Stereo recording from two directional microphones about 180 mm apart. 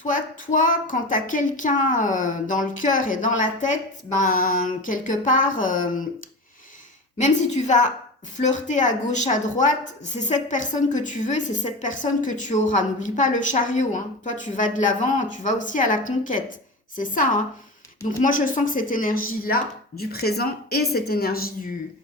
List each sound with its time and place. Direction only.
0.0 s a woman's voice: 45° left (ahead or behind)
7.2 s a woman's voice: 40° left (ahead or behind)